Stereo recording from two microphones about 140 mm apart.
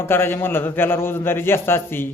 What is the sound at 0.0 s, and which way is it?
A man's voice, 15° left (ahead or behind).